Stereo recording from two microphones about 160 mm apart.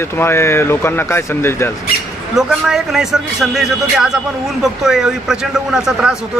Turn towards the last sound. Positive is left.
turn(degrees=-5)  # may be behind; listen again after turning